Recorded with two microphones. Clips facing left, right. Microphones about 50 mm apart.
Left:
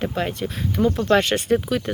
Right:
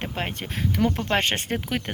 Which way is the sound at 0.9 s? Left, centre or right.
Right.